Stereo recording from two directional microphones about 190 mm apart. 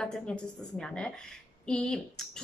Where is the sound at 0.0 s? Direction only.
5° left (ahead or behind).